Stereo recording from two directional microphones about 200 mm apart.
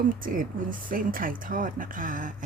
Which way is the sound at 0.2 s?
45° right (ahead or behind).